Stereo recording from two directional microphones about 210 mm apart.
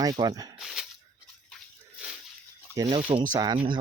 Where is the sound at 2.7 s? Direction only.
15° right (ahead or behind).